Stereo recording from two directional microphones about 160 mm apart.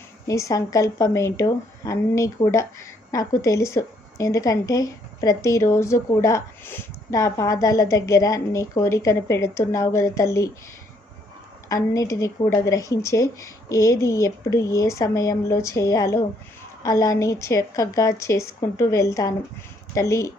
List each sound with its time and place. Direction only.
0.3 s speech: 20° left (ahead or behind)
11.7 s speech: 20° left (ahead or behind)